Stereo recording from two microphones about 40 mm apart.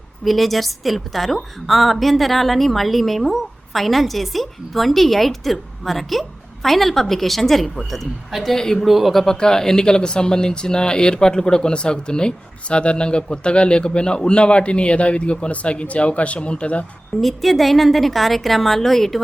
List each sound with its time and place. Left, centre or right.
0.3 s a woman's voice: centre
8.5 s a man's voice: centre
8.8 s a woman's voice: centre
9.2 s speech: centre
17.2 s a woman's voice: centre